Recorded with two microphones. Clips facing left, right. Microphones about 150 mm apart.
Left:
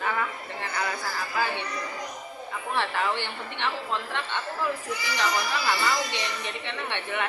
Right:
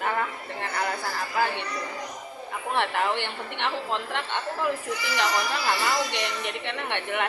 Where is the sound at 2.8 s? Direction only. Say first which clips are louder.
Right 2 dB; 55° right (ahead or behind).